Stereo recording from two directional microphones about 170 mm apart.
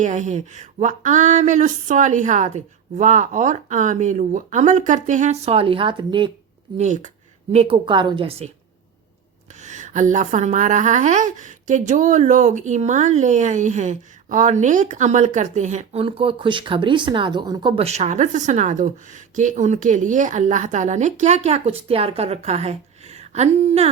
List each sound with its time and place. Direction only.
0.0 s a woman's voice: 45° right (ahead or behind); by 6.3 s 30° right (ahead or behind)
6.7 s a woman's voice: 45° right (ahead or behind)
7.5 s a woman's voice: 35° right (ahead or behind)
9.6 s a woman's voice: 45° right (ahead or behind)